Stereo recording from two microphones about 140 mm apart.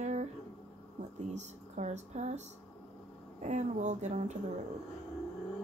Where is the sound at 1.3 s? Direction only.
55° right (ahead or behind).